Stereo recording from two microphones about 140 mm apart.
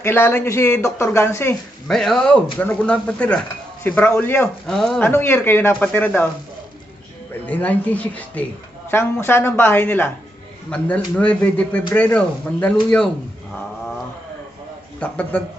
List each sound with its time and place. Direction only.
0.0 s speech: 15° left (ahead or behind)
1.9 s speech: 5° left (ahead or behind)
4.6 s speech: centre (ahead or behind)
5.0 s speech: 15° left (ahead or behind)
7.4 s speech: 10° left (ahead or behind)
15.0 s speech: 10° left (ahead or behind)